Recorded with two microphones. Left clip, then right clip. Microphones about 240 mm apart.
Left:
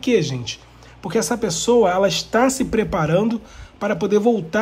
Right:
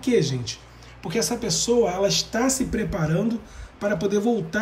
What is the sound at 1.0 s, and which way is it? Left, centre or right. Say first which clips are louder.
Speech: left 5 dB; centre.